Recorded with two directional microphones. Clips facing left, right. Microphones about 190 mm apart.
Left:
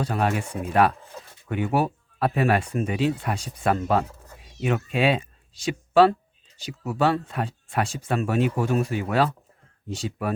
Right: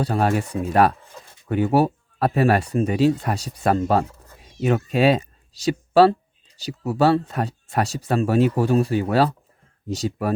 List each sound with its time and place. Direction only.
0.0 s speech: 35° right (ahead or behind)